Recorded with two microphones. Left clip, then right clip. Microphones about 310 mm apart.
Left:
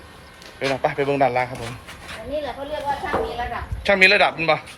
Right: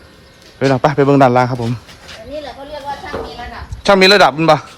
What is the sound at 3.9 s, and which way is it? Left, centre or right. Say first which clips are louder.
Speech: right 7 dB; right.